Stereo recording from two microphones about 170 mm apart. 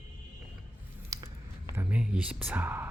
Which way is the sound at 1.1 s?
20° right (ahead or behind).